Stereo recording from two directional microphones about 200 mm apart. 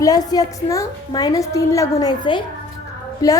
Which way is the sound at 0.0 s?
20° left (ahead or behind).